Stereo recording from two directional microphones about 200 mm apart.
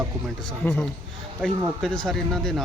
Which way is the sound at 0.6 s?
5° left (ahead or behind).